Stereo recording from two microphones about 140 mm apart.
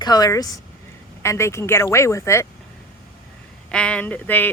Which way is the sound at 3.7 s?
10° left (ahead or behind).